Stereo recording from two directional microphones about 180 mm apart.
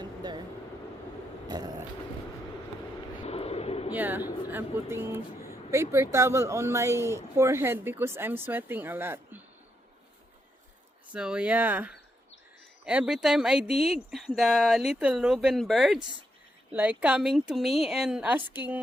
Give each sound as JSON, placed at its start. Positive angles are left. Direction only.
{"t": 0.0, "sound": "vehicle", "side_deg": -25}
{"t": 1.5, "sound": "a sound", "side_deg": -20}
{"t": 3.2, "sound": "vehicle", "side_deg": 35}
{"t": 3.9, "sound": "speech", "side_deg": -10}
{"t": 11.1, "sound": "speech", "side_deg": -5}